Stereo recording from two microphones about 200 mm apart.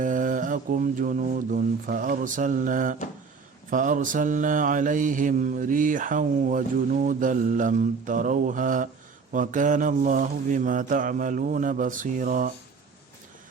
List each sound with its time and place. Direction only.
0.0 s mantra: 40° right (ahead or behind)